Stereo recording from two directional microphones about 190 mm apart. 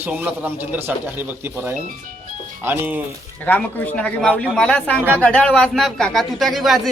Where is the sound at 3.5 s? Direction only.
10° left (ahead or behind).